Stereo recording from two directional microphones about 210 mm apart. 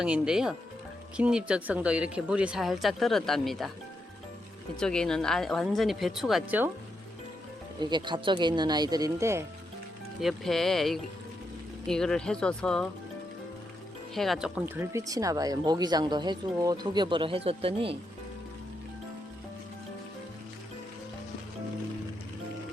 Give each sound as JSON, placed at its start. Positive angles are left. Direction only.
{"t": 0.0, "sound": "speech", "side_deg": -5}
{"t": 4.8, "sound": "speech", "side_deg": 5}
{"t": 7.8, "sound": "speech", "side_deg": -20}
{"t": 10.2, "sound": "speech", "side_deg": 0}
{"t": 14.2, "sound": "speech", "side_deg": 0}